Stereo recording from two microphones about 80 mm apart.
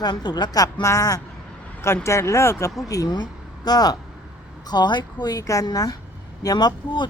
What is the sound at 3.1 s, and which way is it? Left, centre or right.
A woman's voice, left.